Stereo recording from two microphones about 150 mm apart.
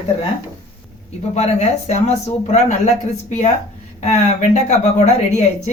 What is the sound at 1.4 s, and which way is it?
Speech, 45° left (ahead or behind).